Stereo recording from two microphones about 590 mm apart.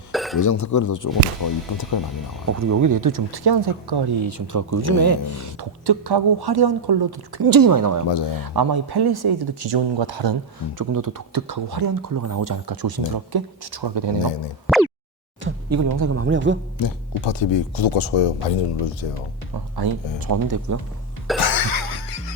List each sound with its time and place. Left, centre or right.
0.1 s a sound: centre
0.3 s speech: left
2.5 s speech: right
5.8 s speech: right
10.8 s speech: right
14.7 s a sound: centre
15.4 s speech: right
16.8 s speech: left
19.7 s speech: right
21.3 s cough: left